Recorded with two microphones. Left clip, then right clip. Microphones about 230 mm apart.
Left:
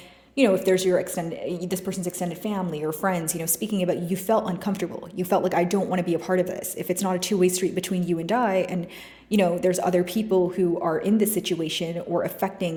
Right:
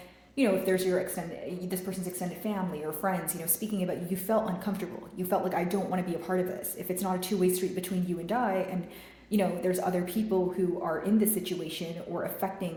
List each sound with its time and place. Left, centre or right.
0.3 s a woman's voice: left